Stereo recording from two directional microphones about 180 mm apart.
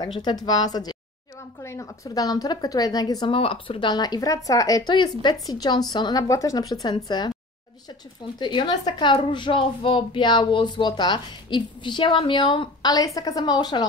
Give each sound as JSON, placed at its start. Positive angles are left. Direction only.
{"t": 0.0, "sound": "a woman's voice", "side_deg": 25}
{"t": 8.4, "sound": "a woman's voice", "side_deg": 25}